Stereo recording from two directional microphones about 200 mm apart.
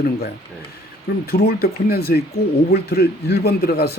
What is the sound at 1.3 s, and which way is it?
Speech, 50° left (ahead or behind).